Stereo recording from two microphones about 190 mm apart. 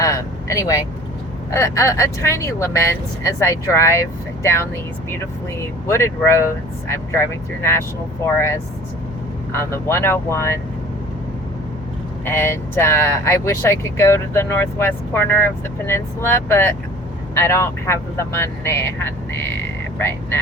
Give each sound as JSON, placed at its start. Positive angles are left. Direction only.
{"t": 0.0, "sound": "speech", "side_deg": 15}
{"t": 5.9, "sound": "speech", "side_deg": 15}
{"t": 9.5, "sound": "speech", "side_deg": 15}
{"t": 12.2, "sound": "speech", "side_deg": 10}